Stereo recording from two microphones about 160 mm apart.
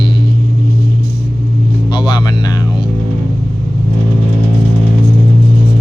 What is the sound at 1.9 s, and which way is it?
Vehicle, 30° left (ahead or behind).